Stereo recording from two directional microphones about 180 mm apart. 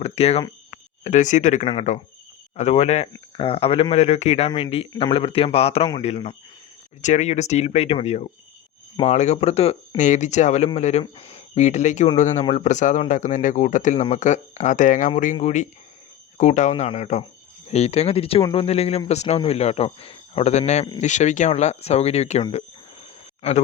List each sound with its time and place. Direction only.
0.0 s speech: 35° left (ahead or behind)